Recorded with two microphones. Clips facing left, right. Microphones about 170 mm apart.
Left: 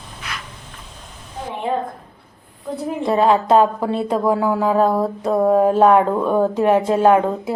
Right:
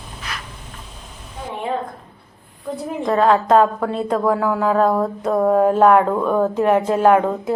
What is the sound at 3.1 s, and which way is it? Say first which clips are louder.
Speech: even; 15° left (ahead or behind).